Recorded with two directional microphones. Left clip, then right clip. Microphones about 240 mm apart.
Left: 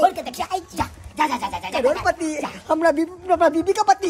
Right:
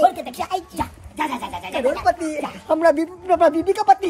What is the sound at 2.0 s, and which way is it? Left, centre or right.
Speech, centre.